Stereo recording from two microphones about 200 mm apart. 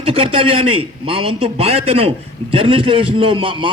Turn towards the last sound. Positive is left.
turn(degrees=-25)  # may be behind; listen again after turning